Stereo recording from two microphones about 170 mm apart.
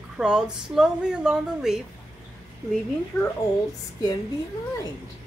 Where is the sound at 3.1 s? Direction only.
15° left (ahead or behind).